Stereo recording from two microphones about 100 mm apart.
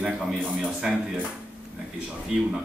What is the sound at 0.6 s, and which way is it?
Speech, 5° right (ahead or behind).